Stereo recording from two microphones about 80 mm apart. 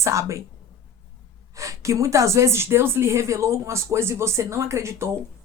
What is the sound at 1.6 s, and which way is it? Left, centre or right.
Speech, right.